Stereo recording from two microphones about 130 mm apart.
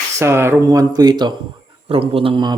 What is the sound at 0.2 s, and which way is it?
Speech, 20° right (ahead or behind).